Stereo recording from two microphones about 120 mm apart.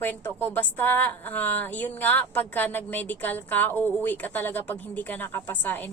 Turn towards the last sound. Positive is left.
turn(degrees=15)  # may be behind; listen again after turning